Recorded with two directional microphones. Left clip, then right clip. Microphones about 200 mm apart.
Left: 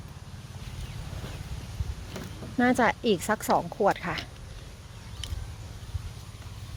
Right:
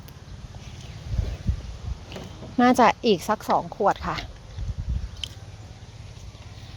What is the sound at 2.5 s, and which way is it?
Speech, 20° right (ahead or behind).